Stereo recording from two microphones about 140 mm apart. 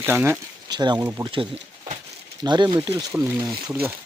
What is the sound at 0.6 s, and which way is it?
Speech, 30° right (ahead or behind).